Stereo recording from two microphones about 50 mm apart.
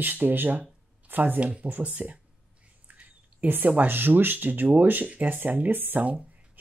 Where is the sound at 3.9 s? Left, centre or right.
Right.